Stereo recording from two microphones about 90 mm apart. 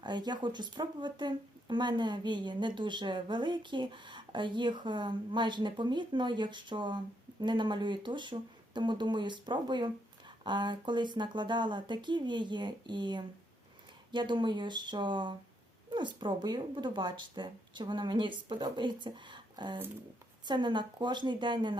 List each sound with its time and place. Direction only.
0.0 s speech: 55° right (ahead or behind)